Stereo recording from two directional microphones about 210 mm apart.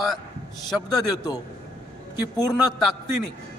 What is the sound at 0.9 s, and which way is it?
Speech, 20° left (ahead or behind).